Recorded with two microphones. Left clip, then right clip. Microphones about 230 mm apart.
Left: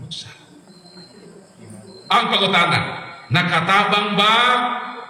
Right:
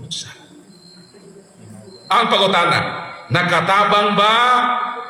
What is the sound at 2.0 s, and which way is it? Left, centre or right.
A man's voice, centre.